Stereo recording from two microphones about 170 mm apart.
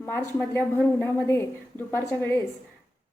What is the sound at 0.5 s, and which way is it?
A woman's voice, 15° left (ahead or behind).